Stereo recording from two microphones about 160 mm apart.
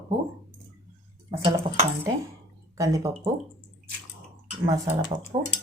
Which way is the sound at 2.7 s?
20° right (ahead or behind).